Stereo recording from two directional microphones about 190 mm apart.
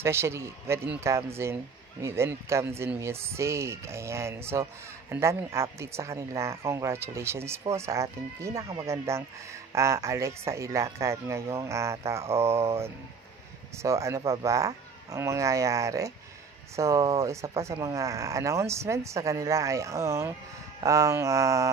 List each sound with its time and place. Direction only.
0.0 s speech: 15° right (ahead or behind)